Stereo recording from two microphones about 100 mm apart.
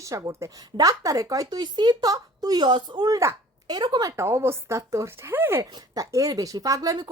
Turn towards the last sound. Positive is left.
turn(degrees=-35)  # may be behind; listen again after turning